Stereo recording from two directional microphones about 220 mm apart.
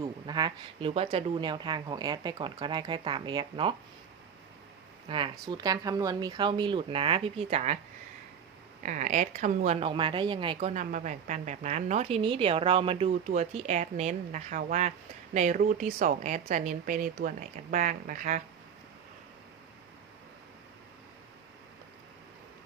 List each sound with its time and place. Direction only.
0.0 s speech: 20° right (ahead or behind)
5.0 s speech: 25° right (ahead or behind)
8.8 s speech: 35° right (ahead or behind)
9.8 s speech: 25° right (ahead or behind)